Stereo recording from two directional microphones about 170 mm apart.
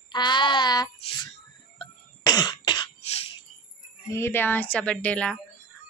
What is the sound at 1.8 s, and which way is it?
Cough, 25° left (ahead or behind).